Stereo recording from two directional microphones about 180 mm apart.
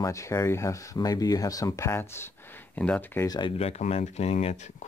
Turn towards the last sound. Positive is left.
turn(degrees=40)  # may be behind; listen again after turning